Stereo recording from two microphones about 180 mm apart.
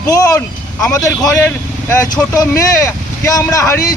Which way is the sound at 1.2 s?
5° left (ahead or behind).